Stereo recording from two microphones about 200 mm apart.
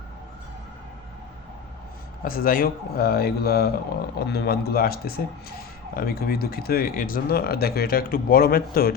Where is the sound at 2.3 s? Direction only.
45° left (ahead or behind).